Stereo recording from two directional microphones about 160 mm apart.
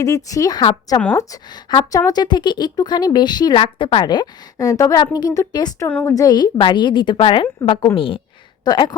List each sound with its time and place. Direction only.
0.0 s a woman's voice: 20° left (ahead or behind)
5.9 s a woman's voice: 10° left (ahead or behind)
6.1 s a woman's voice: 25° left (ahead or behind)